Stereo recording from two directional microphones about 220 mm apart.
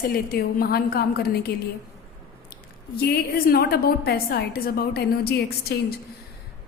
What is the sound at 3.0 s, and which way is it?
A woman's voice, 45° left (ahead or behind).